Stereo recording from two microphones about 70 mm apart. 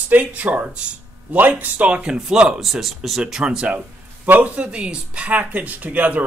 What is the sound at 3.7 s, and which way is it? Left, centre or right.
Speech, right.